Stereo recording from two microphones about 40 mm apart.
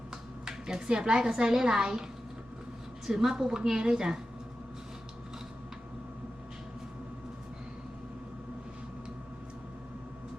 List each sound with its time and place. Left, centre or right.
0.4 s a woman's voice: centre
3.1 s a woman's voice: centre